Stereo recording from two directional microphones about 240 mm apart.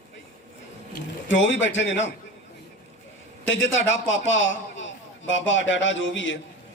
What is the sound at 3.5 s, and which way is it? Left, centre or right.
A man's voice, left.